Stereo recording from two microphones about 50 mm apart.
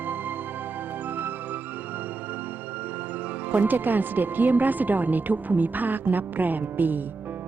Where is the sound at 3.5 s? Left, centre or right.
Right.